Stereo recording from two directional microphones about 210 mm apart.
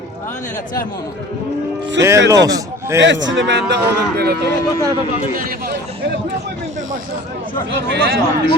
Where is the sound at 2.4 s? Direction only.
15° right (ahead or behind).